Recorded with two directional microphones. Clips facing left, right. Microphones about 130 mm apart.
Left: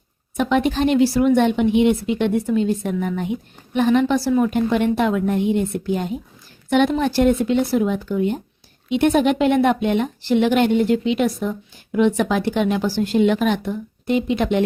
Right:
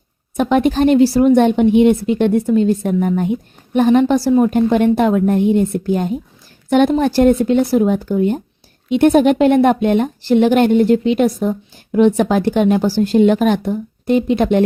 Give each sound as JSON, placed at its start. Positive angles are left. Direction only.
{"t": 0.3, "sound": "a woman's voice", "side_deg": -45}